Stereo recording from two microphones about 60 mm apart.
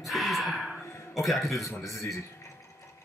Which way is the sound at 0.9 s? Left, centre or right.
Left.